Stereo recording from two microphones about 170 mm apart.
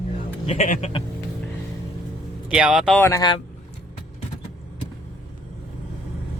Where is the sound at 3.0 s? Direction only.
20° left (ahead or behind).